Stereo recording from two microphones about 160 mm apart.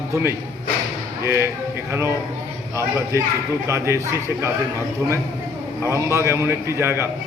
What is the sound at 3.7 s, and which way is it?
Speech, 15° right (ahead or behind).